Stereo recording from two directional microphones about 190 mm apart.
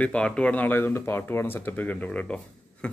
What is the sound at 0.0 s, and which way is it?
Speech, 5° left (ahead or behind).